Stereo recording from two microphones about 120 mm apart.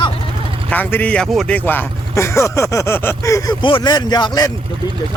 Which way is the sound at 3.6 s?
45° left (ahead or behind).